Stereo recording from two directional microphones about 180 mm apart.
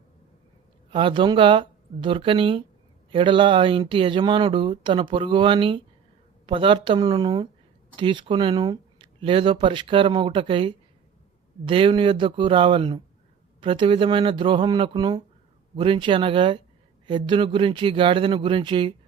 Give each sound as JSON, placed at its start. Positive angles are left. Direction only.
{"t": 0.9, "sound": "speech", "side_deg": -30}